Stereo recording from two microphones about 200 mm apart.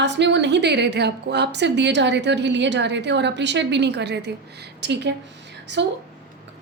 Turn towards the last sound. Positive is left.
turn(degrees=-60)  # may be behind; listen again after turning